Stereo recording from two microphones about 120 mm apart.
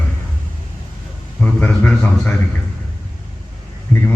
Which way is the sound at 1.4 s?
15° left (ahead or behind).